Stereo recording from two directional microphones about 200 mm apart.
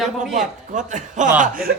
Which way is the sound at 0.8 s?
40° right (ahead or behind).